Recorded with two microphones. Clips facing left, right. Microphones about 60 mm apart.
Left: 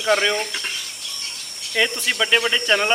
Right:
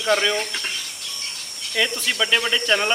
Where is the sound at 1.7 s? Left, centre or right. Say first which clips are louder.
Left 2 dB; left.